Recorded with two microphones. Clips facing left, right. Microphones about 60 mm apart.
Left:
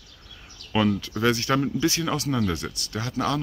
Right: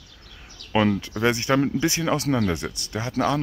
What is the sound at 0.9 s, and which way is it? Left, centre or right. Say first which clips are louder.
Speech: right 1 dB; right.